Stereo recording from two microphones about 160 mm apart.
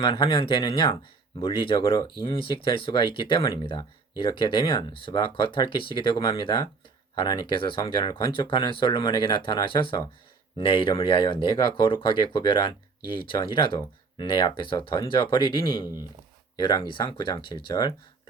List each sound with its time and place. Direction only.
0.0 s speech: 30° left (ahead or behind)